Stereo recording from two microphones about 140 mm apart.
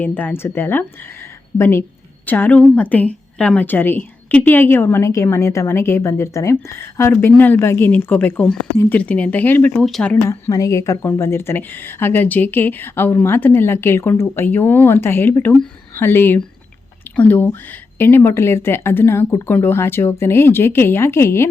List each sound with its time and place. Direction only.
0.0 s a woman's voice: 15° left (ahead or behind)
10.2 s a woman's voice: 20° left (ahead or behind)